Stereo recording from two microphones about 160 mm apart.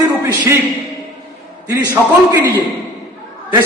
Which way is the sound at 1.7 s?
25° right (ahead or behind).